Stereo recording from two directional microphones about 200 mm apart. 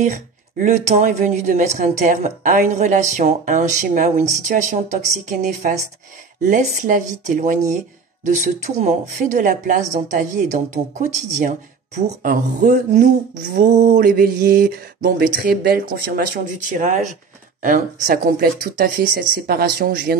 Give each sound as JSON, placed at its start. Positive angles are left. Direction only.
{"t": 0.6, "sound": "a woman's voice", "side_deg": -35}
{"t": 5.1, "sound": "a woman's voice", "side_deg": -40}